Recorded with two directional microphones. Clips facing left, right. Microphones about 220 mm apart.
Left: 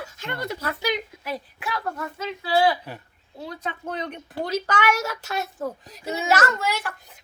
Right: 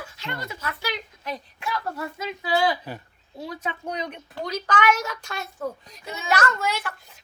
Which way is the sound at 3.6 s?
15° right (ahead or behind).